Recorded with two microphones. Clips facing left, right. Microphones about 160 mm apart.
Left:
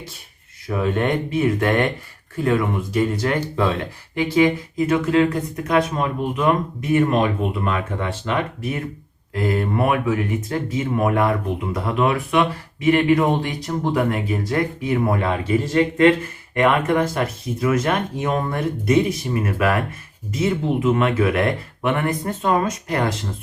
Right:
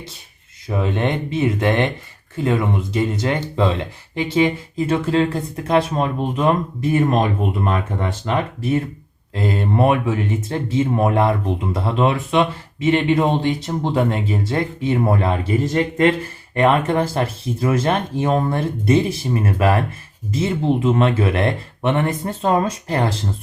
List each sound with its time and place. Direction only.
0.8 s speech: 20° right (ahead or behind); by 16.0 s 40° right (ahead or behind)
16.6 s speech: 30° right (ahead or behind)